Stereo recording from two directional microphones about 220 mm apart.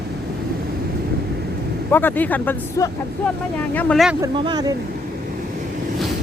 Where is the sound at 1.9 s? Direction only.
10° left (ahead or behind).